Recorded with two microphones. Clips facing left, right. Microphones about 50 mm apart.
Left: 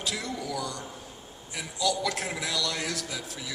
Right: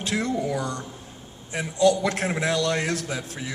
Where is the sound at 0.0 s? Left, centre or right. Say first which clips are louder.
Right 8 dB; right.